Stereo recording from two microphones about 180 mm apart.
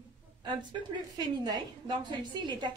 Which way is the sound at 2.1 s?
25° right (ahead or behind).